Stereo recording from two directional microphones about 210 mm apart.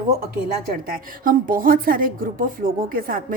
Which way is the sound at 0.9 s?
40° right (ahead or behind).